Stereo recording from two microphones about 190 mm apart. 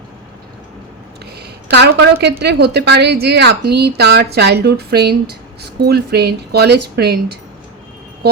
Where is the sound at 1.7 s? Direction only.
60° right (ahead or behind).